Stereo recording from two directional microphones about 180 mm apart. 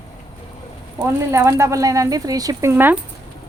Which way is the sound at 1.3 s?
15° right (ahead or behind).